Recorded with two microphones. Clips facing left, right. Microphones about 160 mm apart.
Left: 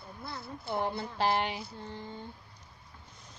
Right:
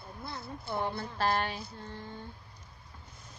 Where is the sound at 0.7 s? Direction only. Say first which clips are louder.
Left 1 dB; 20° left (ahead or behind).